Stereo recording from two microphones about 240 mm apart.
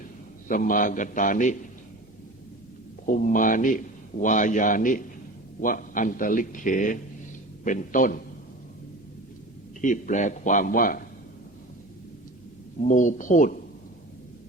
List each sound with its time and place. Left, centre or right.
0.4 s a man's voice: left
3.1 s a man's voice: left
9.8 s a man's voice: left
12.9 s a man's voice: left